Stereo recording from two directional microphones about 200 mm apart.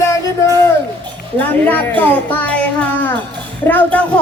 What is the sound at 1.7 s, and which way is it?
A child's voice, 10° left (ahead or behind).